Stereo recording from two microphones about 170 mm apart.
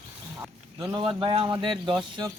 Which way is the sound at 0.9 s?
30° right (ahead or behind).